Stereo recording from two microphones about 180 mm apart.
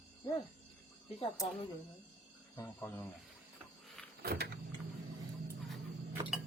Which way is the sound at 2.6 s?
10° left (ahead or behind).